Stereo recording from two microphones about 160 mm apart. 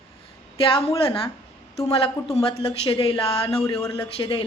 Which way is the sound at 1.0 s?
35° left (ahead or behind).